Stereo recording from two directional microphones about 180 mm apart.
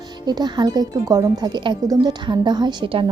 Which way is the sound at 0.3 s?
25° right (ahead or behind).